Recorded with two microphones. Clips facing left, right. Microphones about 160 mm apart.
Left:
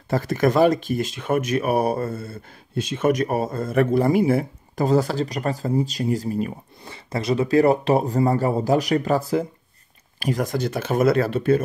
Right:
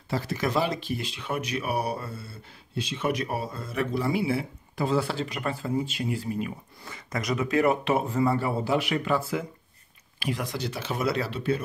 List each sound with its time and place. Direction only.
0.1 s speech: 50° left (ahead or behind)
6.8 s speech: 30° left (ahead or behind); by 11.6 s 50° left (ahead or behind)